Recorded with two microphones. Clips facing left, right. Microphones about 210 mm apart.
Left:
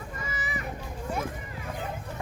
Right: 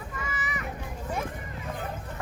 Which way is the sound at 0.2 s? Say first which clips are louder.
Right 1 dB; 35° left (ahead or behind).